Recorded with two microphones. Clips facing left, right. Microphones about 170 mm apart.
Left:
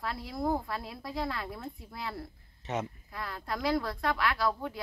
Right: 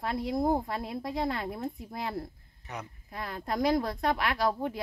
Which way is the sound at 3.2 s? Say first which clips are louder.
Right 3 dB; 20° right (ahead or behind).